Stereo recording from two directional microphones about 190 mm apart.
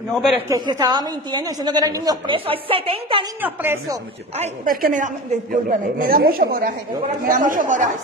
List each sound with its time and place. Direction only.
0.1 s speech: centre (ahead or behind)
0.5 s a woman's voice: 20° right (ahead or behind)
3.3 s speech: 10° right (ahead or behind)
4.6 s a woman's voice: 45° right (ahead or behind)